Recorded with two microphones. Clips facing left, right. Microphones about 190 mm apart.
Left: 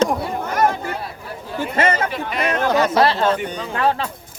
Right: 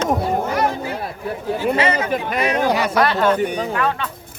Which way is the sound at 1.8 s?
50° left (ahead or behind).